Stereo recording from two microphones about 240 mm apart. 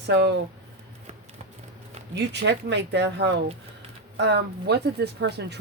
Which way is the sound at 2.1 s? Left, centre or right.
Right.